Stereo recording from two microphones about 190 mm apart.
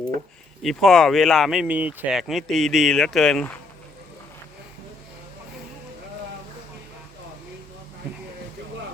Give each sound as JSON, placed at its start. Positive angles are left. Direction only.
{"t": 0.6, "sound": "speech", "side_deg": 0}